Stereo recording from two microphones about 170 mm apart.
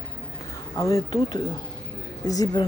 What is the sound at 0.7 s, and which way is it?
Speech, 20° left (ahead or behind).